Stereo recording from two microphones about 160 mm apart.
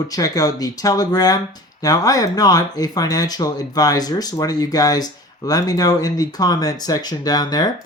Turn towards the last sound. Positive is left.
turn(degrees=25)  # may be behind; listen again after turning